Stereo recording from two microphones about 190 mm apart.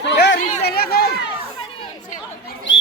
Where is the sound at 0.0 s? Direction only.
65° left (ahead or behind).